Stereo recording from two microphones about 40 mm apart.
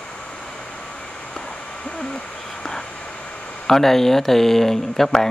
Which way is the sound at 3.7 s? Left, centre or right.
Centre.